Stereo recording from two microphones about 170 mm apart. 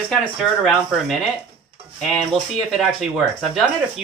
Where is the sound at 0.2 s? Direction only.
Centre (ahead or behind).